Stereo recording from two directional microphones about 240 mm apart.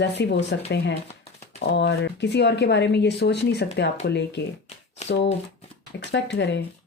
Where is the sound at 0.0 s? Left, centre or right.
Left.